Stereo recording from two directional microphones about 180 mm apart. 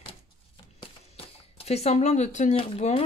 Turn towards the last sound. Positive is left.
turn(degrees=35)  # may be behind; listen again after turning